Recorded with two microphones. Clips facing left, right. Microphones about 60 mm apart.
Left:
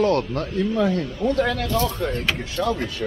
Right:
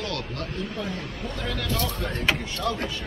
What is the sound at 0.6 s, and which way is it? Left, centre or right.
Speech, left.